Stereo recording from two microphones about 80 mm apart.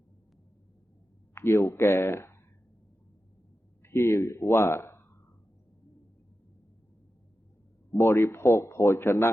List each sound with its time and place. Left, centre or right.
1.4 s speech: left
3.8 s speech: left
7.9 s speech: left